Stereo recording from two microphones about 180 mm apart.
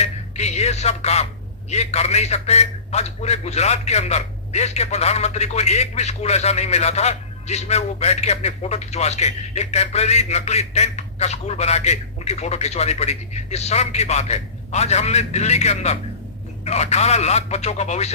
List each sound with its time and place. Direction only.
0.0 s a man's voice: 40° left (ahead or behind)